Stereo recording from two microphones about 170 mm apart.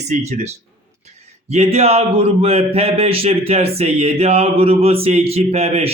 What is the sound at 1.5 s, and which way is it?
A man's voice, 40° right (ahead or behind).